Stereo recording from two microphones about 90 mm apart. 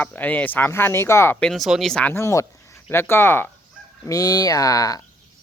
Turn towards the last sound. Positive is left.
turn(degrees=40)  # may be behind; listen again after turning